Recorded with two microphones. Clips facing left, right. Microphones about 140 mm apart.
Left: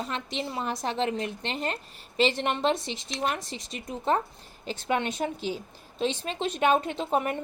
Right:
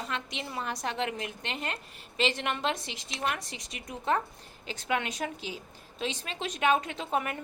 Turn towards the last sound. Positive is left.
turn(degrees=30)  # may be behind; listen again after turning